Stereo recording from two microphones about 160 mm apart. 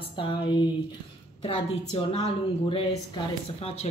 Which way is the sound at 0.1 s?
30° left (ahead or behind).